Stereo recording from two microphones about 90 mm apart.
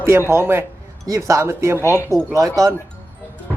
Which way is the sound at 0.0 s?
30° right (ahead or behind).